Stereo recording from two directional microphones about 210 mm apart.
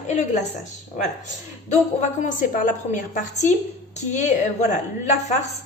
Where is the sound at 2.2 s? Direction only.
35° left (ahead or behind).